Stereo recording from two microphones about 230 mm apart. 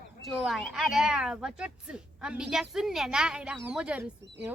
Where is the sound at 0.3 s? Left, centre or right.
Centre.